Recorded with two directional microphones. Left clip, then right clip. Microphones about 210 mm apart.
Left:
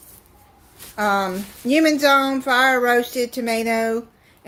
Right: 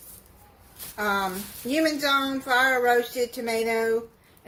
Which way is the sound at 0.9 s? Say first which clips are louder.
Left 6 dB; 40° left (ahead or behind).